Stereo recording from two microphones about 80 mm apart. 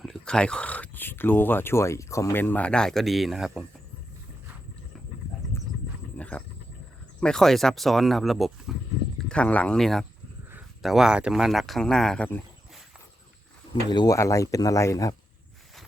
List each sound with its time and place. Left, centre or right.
0.0 s speech: centre; by 2.3 s left
2.3 s speech: left; by 3.7 s centre
5.5 s horse: left
6.1 s wild animals: centre
7.2 s speech: centre
9.3 s speech: centre
9.7 s speech: centre
10.8 s speech: centre
14.1 s speech: left